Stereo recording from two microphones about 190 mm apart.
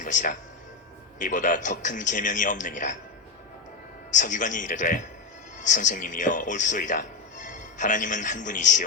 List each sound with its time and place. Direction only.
0.0 s a man's voice: 45° left (ahead or behind)
4.1 s a man's voice: 40° left (ahead or behind)